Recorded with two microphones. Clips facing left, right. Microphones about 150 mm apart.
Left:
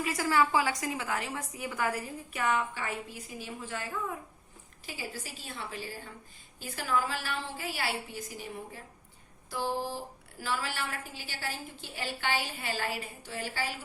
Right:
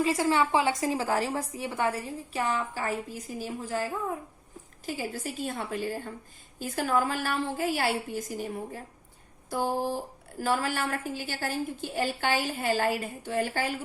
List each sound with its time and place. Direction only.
0.0 s a woman's voice: 25° right (ahead or behind); by 13.7 s 50° right (ahead or behind)